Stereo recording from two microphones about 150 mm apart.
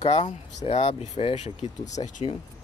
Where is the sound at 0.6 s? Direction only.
40° left (ahead or behind).